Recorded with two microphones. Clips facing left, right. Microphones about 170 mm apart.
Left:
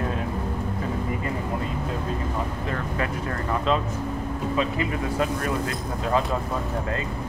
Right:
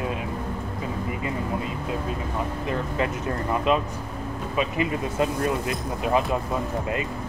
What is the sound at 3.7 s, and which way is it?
Speech, 15° right (ahead or behind).